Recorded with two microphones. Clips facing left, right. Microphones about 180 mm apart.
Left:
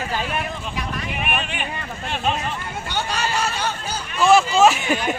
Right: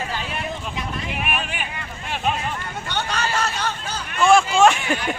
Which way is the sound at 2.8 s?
5° left (ahead or behind).